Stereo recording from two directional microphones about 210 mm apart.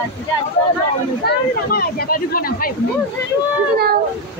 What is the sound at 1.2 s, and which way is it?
Speech, 45° left (ahead or behind).